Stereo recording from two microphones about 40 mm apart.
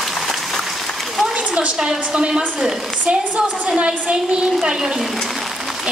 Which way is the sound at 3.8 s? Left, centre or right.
Right.